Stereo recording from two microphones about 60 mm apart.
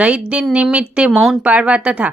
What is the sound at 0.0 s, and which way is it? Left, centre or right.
A woman's voice, centre.